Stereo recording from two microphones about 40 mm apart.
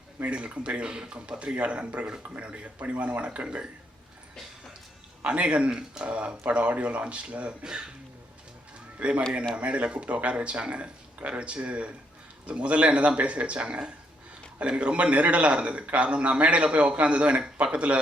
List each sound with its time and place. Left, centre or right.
0.2 s speech: right
5.2 s speech: right
7.6 s speech: centre
9.0 s speech: right